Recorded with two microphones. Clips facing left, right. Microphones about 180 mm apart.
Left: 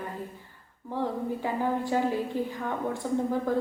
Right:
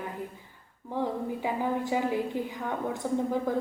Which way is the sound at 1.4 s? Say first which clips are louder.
Even; 15° right (ahead or behind).